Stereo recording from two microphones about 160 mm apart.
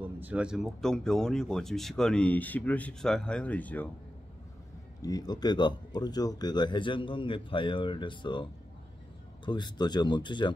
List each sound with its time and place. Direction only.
0.0 s speech: 10° right (ahead or behind); by 3.9 s 10° left (ahead or behind)
5.0 s speech: 25° left (ahead or behind)